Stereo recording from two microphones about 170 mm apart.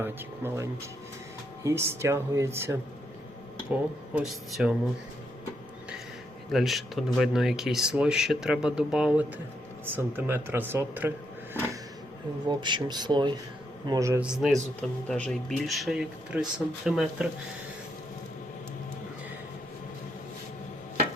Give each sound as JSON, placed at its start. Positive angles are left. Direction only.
{"t": 0.0, "sound": "speech", "side_deg": -15}
{"t": 6.5, "sound": "speech", "side_deg": 0}
{"t": 12.5, "sound": "speech", "side_deg": -25}
{"t": 14.2, "sound": "speech", "side_deg": -5}